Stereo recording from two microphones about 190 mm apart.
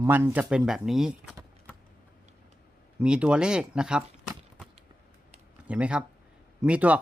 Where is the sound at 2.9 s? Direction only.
5° right (ahead or behind).